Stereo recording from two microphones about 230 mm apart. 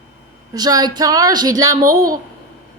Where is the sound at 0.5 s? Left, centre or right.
Centre.